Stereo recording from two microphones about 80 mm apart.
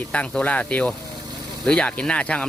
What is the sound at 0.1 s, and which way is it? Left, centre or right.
Speech, centre.